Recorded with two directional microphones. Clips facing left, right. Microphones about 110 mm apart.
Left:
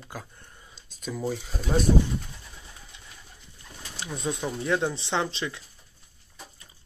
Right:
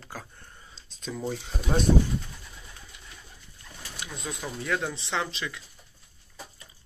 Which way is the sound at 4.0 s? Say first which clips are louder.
Left 6 dB; 30° left (ahead or behind).